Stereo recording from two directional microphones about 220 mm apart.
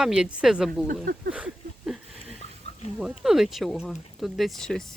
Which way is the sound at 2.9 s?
Centre (ahead or behind).